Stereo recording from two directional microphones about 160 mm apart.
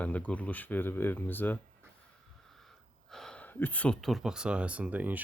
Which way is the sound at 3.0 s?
5° left (ahead or behind).